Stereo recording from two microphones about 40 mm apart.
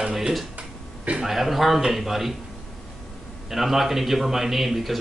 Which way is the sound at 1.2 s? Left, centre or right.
Centre.